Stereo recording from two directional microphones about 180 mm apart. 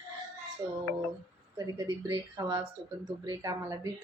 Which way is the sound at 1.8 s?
20° right (ahead or behind).